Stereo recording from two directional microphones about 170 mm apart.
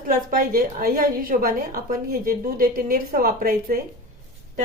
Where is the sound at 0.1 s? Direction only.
55° right (ahead or behind).